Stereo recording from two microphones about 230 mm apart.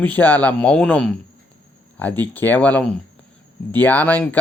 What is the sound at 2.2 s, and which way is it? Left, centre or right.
Speech, centre.